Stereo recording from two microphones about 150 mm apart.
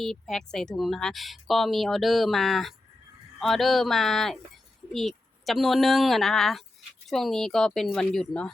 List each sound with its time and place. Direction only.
0.0 s speech: centre (ahead or behind)